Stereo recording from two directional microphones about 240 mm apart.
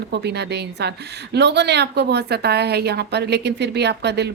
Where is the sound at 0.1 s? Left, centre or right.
Right.